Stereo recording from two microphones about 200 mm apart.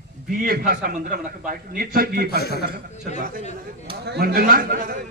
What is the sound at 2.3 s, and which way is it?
Speech, 55° left (ahead or behind).